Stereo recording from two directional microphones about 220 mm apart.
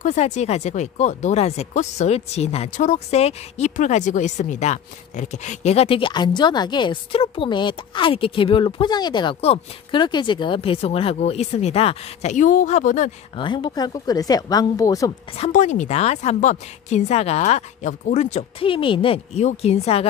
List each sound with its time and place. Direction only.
0.0 s speech: 30° left (ahead or behind)
13.4 s speech: 20° left (ahead or behind)
15.3 s speech: 30° left (ahead or behind)